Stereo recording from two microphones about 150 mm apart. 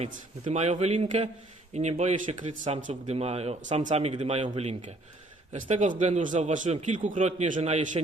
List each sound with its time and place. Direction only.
0.0 s a man's voice: 50° right (ahead or behind)